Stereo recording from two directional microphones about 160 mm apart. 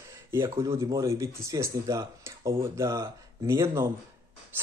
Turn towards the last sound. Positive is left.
turn(degrees=-15)  # may be behind; listen again after turning